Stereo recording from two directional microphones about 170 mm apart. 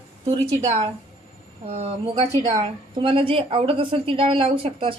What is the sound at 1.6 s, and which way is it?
A woman's voice, 40° right (ahead or behind).